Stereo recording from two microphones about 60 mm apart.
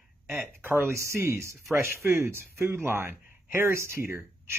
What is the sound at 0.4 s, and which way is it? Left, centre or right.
Speech, right.